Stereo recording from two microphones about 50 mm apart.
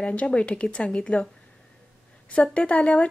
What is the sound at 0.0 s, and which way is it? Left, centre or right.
Speech, left.